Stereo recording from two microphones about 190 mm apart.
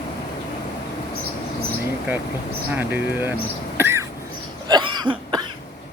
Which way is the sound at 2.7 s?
10° right (ahead or behind).